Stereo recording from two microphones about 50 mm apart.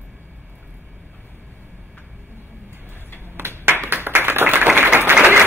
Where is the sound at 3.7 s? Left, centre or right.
Right.